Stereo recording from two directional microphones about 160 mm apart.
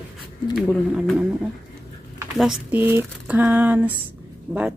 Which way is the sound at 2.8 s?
15° right (ahead or behind).